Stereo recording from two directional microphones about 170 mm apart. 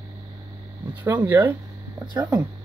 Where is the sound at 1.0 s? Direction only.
10° right (ahead or behind).